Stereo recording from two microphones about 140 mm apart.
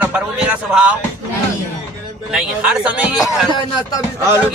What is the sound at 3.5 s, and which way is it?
Speech, 35° left (ahead or behind).